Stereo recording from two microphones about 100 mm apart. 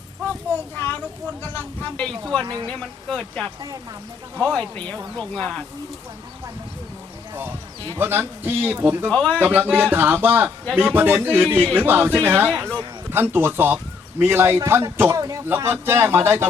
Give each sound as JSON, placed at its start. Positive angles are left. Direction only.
{"t": 1.4, "sound": "speech", "side_deg": 20}
{"t": 2.4, "sound": "speech", "side_deg": -40}
{"t": 2.6, "sound": "speech", "side_deg": 10}
{"t": 7.9, "sound": "speech", "side_deg": -20}
{"t": 9.0, "sound": "speech", "side_deg": 10}
{"t": 9.4, "sound": "speech", "side_deg": -20}